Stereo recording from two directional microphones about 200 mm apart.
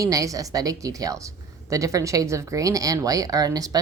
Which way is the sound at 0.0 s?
15° right (ahead or behind).